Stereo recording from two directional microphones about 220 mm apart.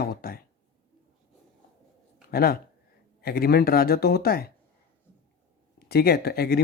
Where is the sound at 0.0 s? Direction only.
45° left (ahead or behind).